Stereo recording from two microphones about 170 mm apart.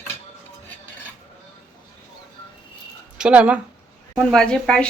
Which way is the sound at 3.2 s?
5° right (ahead or behind).